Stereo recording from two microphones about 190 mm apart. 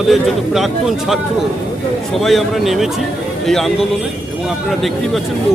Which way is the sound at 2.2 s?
Centre (ahead or behind).